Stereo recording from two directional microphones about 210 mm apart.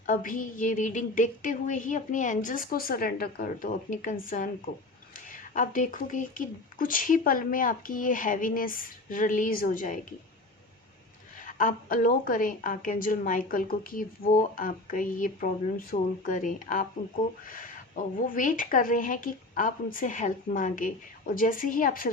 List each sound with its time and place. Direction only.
0.0 s a woman's voice: 40° left (ahead or behind)
11.4 s a woman's voice: 40° left (ahead or behind)